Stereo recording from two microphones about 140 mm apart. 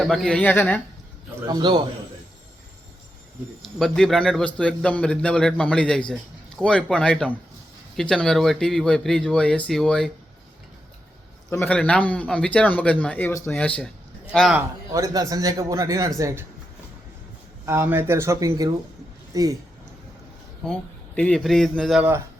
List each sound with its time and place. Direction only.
0.0 s a man's voice: centre (ahead or behind)
1.5 s a man's voice: 30° right (ahead or behind)
3.8 s a man's voice: 5° left (ahead or behind)
11.5 s a man's voice: 10° left (ahead or behind)
14.9 s a man's voice: 25° right (ahead or behind)
17.7 s a man's voice: 15° right (ahead or behind)
20.6 s speech: 5° left (ahead or behind)